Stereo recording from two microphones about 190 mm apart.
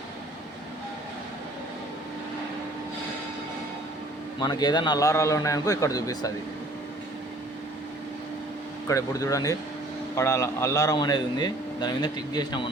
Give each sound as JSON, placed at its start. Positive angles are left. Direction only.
{"t": 4.4, "sound": "a man's voice", "side_deg": 20}
{"t": 8.9, "sound": "a man's voice", "side_deg": 15}